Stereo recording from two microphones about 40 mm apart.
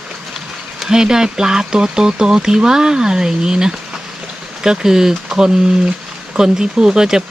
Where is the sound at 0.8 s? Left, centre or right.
Centre.